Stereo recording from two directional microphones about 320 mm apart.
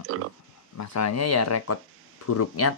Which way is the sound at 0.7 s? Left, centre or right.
Left.